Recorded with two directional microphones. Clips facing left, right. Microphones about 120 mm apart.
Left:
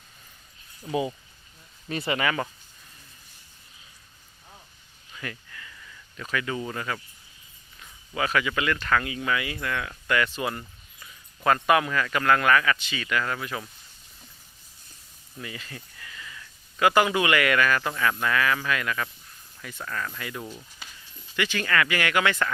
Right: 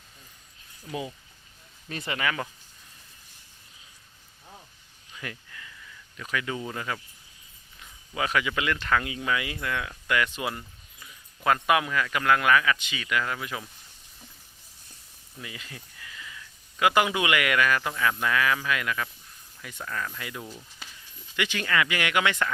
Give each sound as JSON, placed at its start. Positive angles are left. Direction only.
{"t": 1.9, "sound": "speech", "side_deg": 5}
{"t": 5.1, "sound": "speech", "side_deg": -15}
{"t": 15.4, "sound": "a sound", "side_deg": -15}
{"t": 16.8, "sound": "speech", "side_deg": -15}
{"t": 20.4, "sound": "speech", "side_deg": 10}
{"t": 21.3, "sound": "speech", "side_deg": -15}